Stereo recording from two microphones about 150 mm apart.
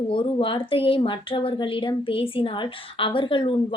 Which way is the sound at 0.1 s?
35° left (ahead or behind).